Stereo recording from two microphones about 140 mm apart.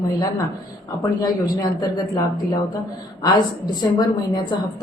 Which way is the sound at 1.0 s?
25° left (ahead or behind).